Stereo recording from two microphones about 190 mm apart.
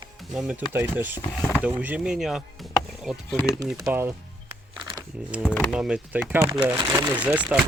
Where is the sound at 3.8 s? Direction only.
15° right (ahead or behind).